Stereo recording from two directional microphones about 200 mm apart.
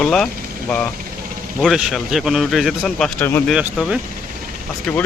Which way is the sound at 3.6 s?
5° right (ahead or behind).